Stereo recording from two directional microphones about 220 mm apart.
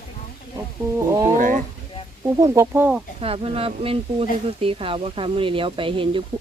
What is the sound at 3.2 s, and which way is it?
Speech, 25° right (ahead or behind).